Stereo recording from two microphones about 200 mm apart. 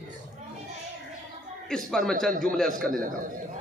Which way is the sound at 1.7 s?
5° left (ahead or behind).